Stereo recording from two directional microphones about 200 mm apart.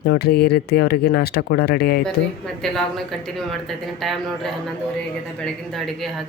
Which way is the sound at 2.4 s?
Centre (ahead or behind).